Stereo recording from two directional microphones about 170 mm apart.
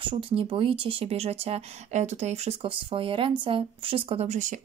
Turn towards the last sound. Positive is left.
turn(degrees=-45)  # may be behind; listen again after turning